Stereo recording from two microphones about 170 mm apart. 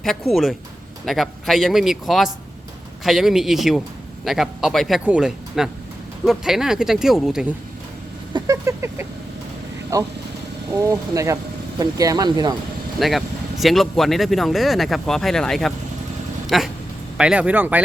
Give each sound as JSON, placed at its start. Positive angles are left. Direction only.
{"t": 0.0, "sound": "a man's voice", "side_deg": 0}
{"t": 8.3, "sound": "a sound", "side_deg": -20}
{"t": 9.9, "sound": "speech", "side_deg": -20}
{"t": 13.0, "sound": "a man's voice", "side_deg": 0}